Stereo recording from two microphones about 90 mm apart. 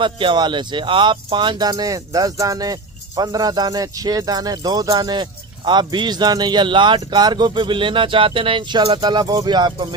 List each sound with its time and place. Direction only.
0.0 s speech: 65° right (ahead or behind)